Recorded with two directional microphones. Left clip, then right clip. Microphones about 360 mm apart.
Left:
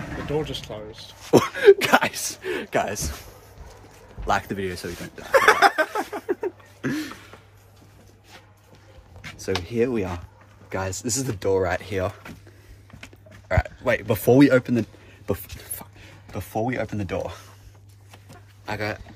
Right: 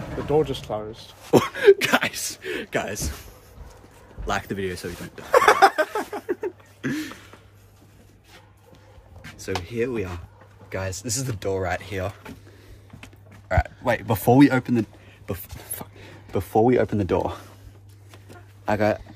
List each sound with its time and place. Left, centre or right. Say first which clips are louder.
0.3 s speech: right 7 dB; centre
1.3 s speech: left 1 dB; centre
4.3 s speech: left 2 dB; centre
5.2 s a sound: right 1 dB; centre
5.9 s a sound: left 1 dB; centre
9.2 s speech: left 2 dB; centre
13.5 s speech: even; centre
15.5 s speech: right 2 dB; right
18.7 s speech: right 7 dB; centre